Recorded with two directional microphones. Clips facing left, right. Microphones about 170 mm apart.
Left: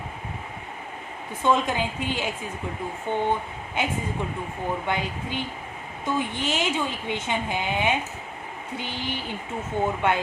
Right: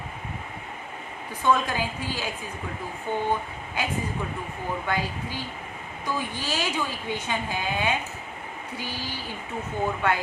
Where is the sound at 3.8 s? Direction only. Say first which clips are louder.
Left 2 dB; 25° left (ahead or behind).